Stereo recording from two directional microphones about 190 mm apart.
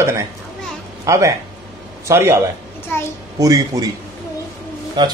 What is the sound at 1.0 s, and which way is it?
A man's voice, 15° right (ahead or behind).